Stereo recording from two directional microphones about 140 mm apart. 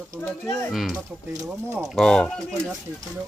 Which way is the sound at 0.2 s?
15° left (ahead or behind).